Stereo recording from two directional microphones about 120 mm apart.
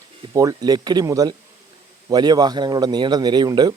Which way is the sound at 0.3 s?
30° right (ahead or behind).